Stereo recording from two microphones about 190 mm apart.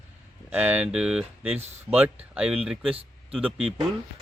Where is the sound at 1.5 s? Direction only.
35° right (ahead or behind).